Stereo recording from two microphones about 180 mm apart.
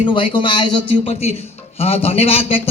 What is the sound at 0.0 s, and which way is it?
A man's voice, 25° left (ahead or behind).